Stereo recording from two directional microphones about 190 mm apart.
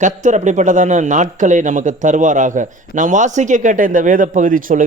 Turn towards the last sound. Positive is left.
turn(degrees=-45)  # may be behind; listen again after turning